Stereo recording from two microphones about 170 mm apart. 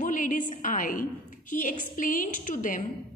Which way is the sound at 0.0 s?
50° left (ahead or behind).